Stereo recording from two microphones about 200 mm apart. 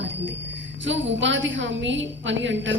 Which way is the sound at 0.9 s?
65° right (ahead or behind).